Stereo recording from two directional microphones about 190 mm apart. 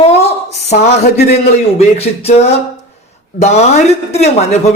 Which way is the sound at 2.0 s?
30° left (ahead or behind).